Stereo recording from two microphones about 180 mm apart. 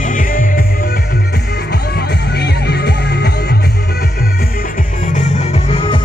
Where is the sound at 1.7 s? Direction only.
65° left (ahead or behind).